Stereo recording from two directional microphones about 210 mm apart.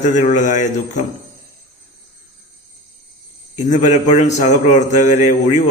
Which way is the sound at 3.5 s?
35° left (ahead or behind).